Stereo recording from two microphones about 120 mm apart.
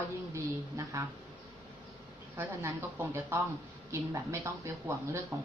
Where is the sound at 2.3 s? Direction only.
20° right (ahead or behind).